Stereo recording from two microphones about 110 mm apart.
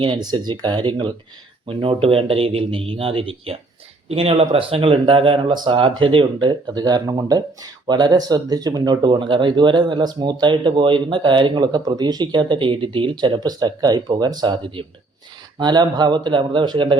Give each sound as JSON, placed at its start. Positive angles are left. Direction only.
{"t": 0.0, "sound": "speech", "side_deg": -45}
{"t": 1.6, "sound": "speech", "side_deg": -55}